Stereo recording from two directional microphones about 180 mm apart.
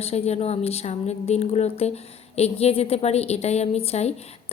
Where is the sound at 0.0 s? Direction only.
35° left (ahead or behind).